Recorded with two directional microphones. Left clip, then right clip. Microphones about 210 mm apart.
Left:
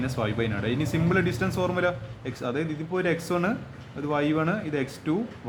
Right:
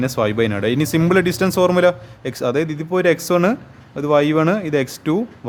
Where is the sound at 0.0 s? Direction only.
50° right (ahead or behind).